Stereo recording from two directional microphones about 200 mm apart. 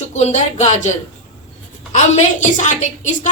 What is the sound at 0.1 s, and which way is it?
A woman's voice, 35° left (ahead or behind).